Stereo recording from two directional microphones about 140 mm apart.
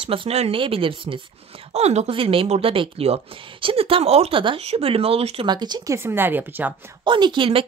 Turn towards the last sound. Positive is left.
turn(degrees=-35)  # may be behind; listen again after turning